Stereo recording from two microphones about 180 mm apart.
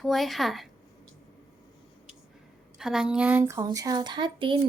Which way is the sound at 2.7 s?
5° right (ahead or behind).